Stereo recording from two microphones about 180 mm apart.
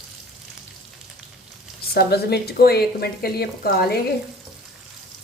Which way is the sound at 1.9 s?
60° left (ahead or behind).